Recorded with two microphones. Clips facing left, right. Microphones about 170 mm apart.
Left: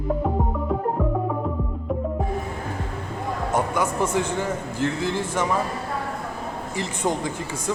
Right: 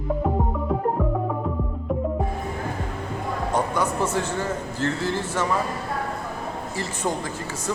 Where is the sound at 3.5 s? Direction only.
10° left (ahead or behind).